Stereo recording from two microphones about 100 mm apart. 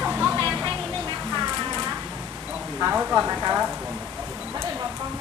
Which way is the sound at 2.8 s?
15° right (ahead or behind).